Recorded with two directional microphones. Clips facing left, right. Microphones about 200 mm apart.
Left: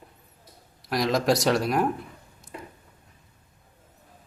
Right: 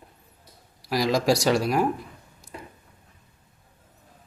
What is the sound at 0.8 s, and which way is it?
Speech, centre (ahead or behind).